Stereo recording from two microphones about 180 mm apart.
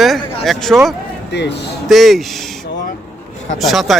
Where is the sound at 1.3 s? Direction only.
70° left (ahead or behind).